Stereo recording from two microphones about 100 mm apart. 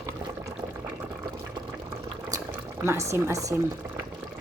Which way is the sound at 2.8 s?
25° right (ahead or behind).